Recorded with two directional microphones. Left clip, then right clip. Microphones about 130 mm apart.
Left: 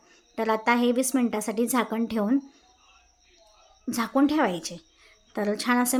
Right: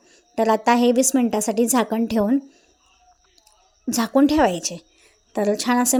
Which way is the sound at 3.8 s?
35° right (ahead or behind).